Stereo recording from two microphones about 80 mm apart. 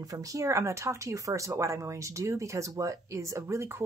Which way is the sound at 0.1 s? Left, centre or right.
Right.